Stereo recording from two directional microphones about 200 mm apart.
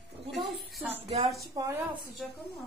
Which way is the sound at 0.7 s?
5° right (ahead or behind).